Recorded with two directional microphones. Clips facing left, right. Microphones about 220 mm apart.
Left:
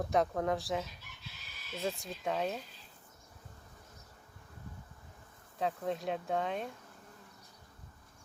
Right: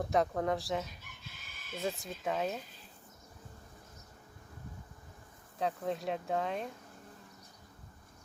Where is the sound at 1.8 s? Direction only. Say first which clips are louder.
Even; centre (ahead or behind).